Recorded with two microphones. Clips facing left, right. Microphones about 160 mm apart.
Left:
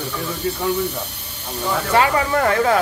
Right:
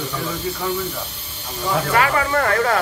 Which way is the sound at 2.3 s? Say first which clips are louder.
Left 2 dB; 10° left (ahead or behind).